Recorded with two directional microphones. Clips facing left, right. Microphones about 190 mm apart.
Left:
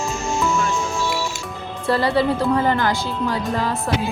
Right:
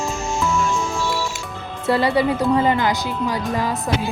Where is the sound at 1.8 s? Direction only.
20° right (ahead or behind).